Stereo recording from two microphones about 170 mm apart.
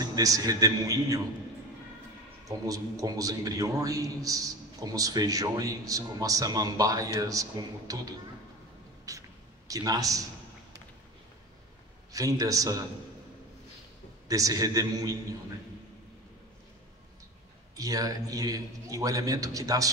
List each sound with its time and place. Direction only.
0.0 s a man's voice: 20° right (ahead or behind)
2.4 s a man's voice: 20° right (ahead or behind)
9.1 s a sound: 20° right (ahead or behind)
9.7 s a man's voice: 20° right (ahead or behind)
12.1 s a man's voice: 20° right (ahead or behind)
14.2 s a man's voice: 20° right (ahead or behind)
17.7 s a man's voice: 20° right (ahead or behind)